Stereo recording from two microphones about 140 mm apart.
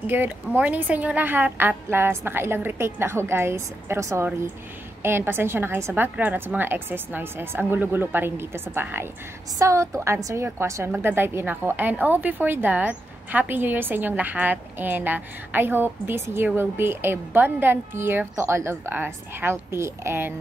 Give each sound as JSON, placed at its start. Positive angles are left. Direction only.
{"t": 0.0, "sound": "a woman's voice", "side_deg": -15}